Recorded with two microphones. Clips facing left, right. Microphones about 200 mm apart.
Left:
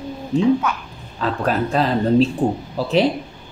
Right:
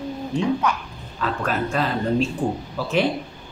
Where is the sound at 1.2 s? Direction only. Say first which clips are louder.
Left 4 dB; 35° left (ahead or behind).